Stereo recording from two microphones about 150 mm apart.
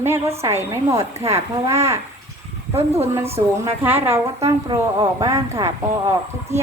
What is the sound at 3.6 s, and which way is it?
Speech, 15° right (ahead or behind).